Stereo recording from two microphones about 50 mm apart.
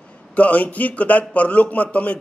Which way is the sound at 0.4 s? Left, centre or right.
Left.